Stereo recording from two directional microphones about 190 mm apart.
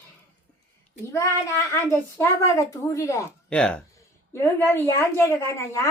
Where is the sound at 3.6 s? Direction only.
5° left (ahead or behind).